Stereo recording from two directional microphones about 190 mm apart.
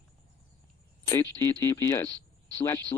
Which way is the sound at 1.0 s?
15° left (ahead or behind).